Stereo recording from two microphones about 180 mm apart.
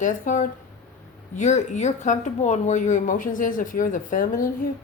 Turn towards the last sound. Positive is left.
turn(degrees=50)  # may be behind; listen again after turning